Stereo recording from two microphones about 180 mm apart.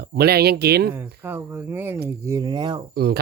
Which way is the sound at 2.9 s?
60° right (ahead or behind).